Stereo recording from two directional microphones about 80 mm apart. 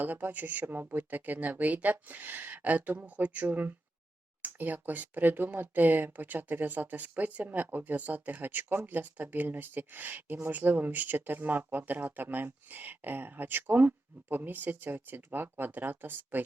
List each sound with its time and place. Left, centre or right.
0.0 s speech: right